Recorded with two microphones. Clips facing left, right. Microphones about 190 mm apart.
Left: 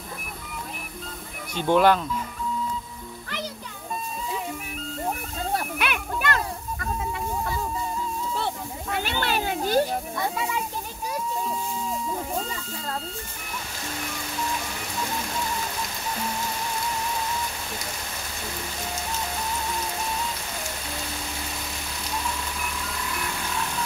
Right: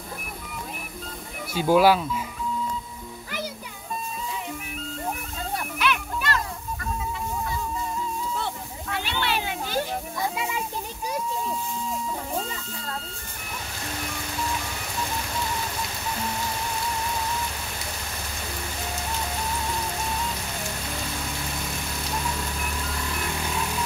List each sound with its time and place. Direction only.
1.5 s speech: 5° right (ahead or behind)
5.8 s music: 55° left (ahead or behind)
8.9 s a sound: 45° left (ahead or behind)